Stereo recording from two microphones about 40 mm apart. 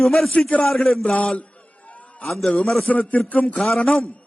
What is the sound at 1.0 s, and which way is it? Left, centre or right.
Speech, left.